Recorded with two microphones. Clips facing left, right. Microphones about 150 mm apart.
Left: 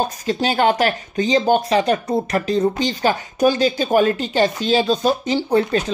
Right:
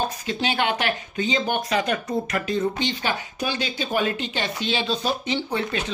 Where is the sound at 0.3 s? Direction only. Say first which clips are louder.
Left 8 dB; 40° left (ahead or behind).